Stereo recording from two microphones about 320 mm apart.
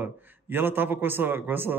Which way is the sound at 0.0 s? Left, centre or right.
Centre.